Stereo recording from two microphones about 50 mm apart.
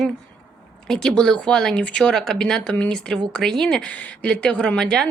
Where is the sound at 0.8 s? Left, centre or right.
Centre.